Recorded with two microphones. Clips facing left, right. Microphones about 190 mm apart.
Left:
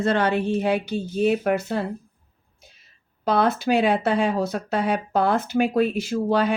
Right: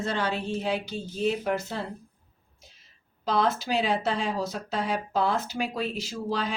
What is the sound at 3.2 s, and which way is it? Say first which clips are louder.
Speech: left 5 dB; 60° left (ahead or behind).